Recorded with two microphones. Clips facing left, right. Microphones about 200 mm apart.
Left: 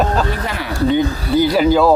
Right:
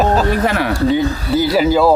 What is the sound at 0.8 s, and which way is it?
Speech, 5° right (ahead or behind).